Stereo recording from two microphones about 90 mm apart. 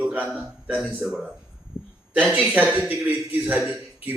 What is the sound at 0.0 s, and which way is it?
Speech, 20° right (ahead or behind).